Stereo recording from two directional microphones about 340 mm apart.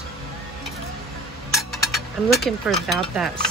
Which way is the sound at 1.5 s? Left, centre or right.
Centre.